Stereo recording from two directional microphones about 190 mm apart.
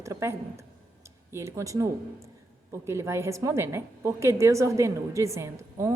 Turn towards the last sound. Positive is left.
turn(degrees=-15)  # may be behind; listen again after turning